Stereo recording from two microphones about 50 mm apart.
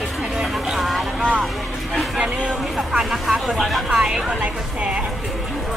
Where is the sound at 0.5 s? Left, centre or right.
Centre.